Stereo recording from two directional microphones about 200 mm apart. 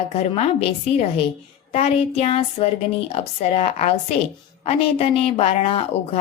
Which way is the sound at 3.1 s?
30° left (ahead or behind).